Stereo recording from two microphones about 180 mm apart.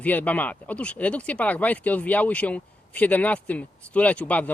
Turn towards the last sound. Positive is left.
turn(degrees=10)  # may be behind; listen again after turning